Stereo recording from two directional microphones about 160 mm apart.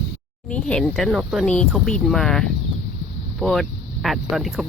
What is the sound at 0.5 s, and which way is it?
Speech, 5° left (ahead or behind).